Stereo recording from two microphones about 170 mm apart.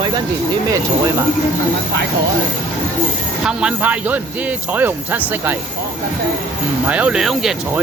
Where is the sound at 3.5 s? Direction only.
5° right (ahead or behind).